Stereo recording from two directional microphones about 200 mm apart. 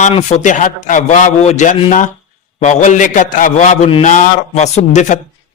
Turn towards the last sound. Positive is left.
turn(degrees=35)  # may be behind; listen again after turning